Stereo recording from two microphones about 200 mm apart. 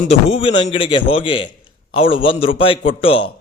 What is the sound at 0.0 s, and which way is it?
A man's voice, 30° left (ahead or behind).